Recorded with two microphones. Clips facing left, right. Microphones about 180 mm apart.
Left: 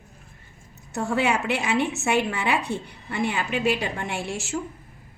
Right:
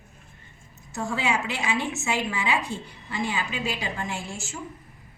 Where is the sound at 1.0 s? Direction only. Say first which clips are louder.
Left 4 dB; 60° left (ahead or behind).